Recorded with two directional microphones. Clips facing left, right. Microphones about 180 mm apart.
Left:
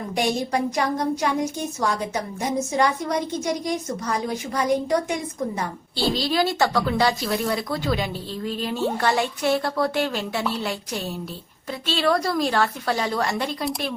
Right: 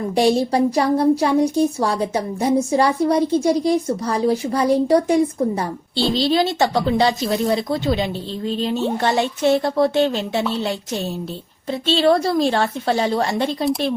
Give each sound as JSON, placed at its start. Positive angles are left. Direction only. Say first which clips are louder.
{"t": 0.2, "sound": "a woman's voice", "louder": "right 7 dB", "side_deg": -35}